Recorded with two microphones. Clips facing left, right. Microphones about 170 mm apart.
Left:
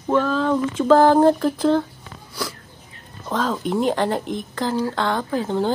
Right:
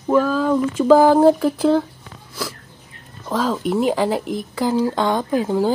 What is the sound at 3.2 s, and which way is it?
Speech, 5° right (ahead or behind).